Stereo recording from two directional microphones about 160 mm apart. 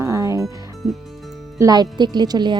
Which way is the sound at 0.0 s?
20° right (ahead or behind).